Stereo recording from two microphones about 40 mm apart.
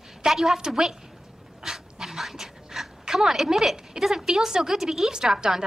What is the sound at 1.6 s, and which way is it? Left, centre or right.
Dog, centre.